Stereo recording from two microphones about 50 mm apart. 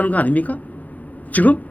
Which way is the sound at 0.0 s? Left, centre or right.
Left.